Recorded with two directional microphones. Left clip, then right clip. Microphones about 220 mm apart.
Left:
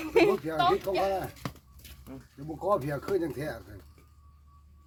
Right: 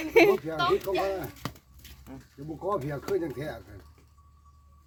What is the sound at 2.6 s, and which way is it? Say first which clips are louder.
Speech: left 2 dB; 15° left (ahead or behind).